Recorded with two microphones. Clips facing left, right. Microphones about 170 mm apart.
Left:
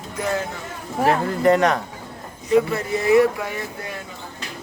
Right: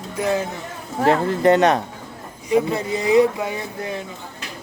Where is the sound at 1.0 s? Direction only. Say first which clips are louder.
Right 2 dB; 25° right (ahead or behind).